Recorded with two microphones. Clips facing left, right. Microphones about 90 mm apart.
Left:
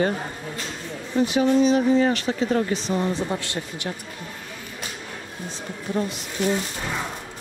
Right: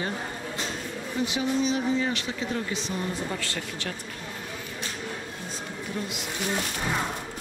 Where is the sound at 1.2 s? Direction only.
45° left (ahead or behind).